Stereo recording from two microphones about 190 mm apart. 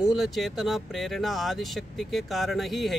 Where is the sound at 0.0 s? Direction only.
Centre (ahead or behind).